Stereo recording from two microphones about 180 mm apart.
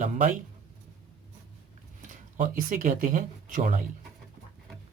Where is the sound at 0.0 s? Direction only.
45° right (ahead or behind).